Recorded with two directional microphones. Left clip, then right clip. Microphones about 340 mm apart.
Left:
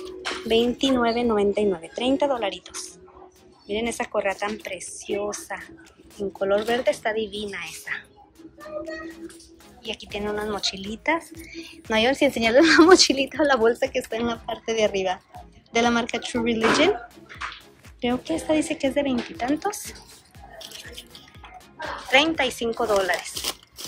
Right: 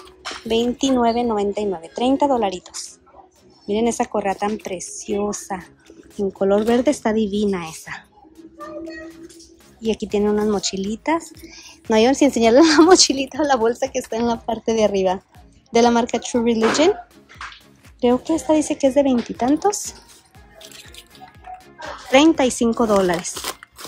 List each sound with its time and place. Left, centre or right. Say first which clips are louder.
0.5 s speech: right 2 dB; centre
9.8 s speech: right 10 dB; centre
18.0 s speech: right 7 dB; centre
22.1 s speech: right 5 dB; centre